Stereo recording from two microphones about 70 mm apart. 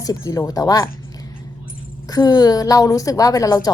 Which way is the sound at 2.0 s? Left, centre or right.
Left.